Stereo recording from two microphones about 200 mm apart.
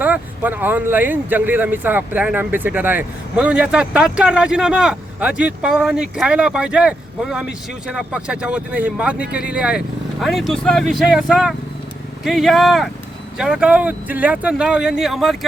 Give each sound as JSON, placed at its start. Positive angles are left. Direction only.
{"t": 0.0, "sound": "speech", "side_deg": -10}